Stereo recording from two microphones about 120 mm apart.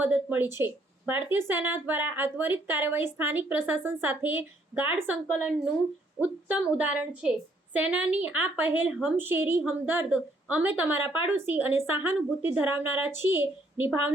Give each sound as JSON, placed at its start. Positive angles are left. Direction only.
{"t": 0.0, "sound": "a woman's voice", "side_deg": -15}
{"t": 6.7, "sound": "a woman's voice", "side_deg": -10}